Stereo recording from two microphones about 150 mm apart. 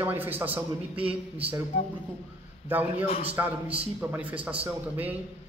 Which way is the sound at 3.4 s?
20° right (ahead or behind).